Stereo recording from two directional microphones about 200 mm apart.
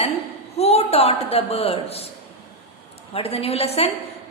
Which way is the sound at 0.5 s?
30° left (ahead or behind).